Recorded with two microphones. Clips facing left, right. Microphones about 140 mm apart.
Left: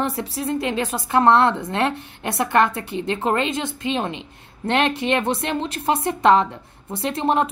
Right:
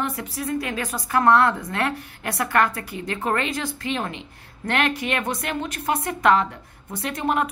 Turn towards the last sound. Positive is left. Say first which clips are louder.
# left 3 dB
turn(degrees=25)  # may be behind; listen again after turning